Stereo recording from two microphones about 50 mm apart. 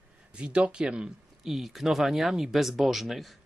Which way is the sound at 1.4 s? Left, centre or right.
Centre.